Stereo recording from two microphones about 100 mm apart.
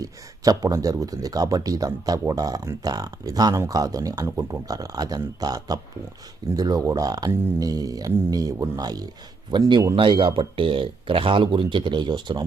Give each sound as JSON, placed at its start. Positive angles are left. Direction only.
{"t": 0.0, "sound": "a man's voice", "side_deg": -40}